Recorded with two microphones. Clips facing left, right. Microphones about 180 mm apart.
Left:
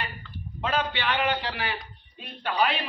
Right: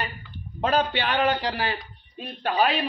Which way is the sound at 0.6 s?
40° right (ahead or behind).